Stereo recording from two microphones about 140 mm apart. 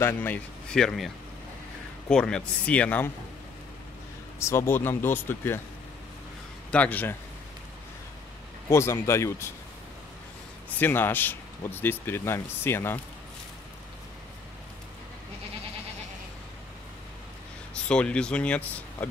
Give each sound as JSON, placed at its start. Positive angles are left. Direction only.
{"t": 0.0, "sound": "speech", "side_deg": 10}
{"t": 4.4, "sound": "speech", "side_deg": 20}
{"t": 6.7, "sound": "speech", "side_deg": 10}
{"t": 8.6, "sound": "speech", "side_deg": 20}
{"t": 10.8, "sound": "speech", "side_deg": 15}
{"t": 17.8, "sound": "speech", "side_deg": 10}